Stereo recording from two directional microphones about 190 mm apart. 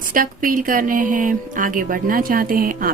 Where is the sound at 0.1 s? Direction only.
45° right (ahead or behind).